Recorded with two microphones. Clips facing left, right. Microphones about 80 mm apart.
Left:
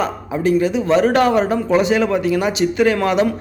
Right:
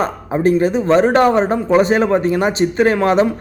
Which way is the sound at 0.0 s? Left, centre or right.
Right.